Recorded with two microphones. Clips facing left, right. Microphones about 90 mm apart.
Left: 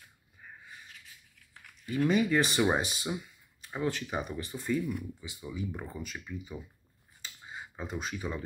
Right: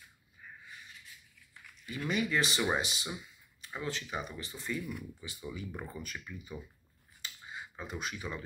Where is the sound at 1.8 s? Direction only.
35° left (ahead or behind).